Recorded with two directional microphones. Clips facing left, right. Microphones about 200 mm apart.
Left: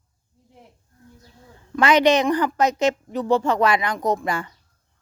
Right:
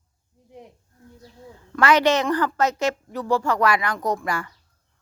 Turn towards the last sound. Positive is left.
turn(degrees=20)  # may be behind; listen again after turning